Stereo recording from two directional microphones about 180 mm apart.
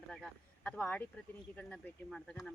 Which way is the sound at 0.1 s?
5° left (ahead or behind).